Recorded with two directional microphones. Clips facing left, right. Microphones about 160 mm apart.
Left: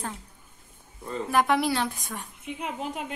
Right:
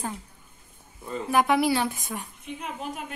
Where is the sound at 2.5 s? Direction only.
15° left (ahead or behind).